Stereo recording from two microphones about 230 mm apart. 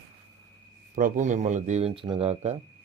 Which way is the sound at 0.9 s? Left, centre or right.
Right.